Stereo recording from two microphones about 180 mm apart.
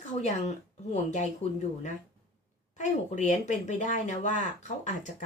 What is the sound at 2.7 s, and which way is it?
Speech, 40° left (ahead or behind).